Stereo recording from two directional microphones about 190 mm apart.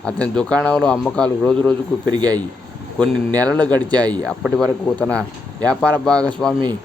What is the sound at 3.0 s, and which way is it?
Speech, 5° left (ahead or behind).